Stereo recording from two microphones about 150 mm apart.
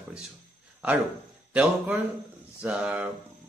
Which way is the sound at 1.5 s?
10° right (ahead or behind).